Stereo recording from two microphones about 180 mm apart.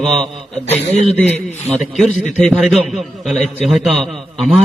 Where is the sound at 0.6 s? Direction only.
35° left (ahead or behind).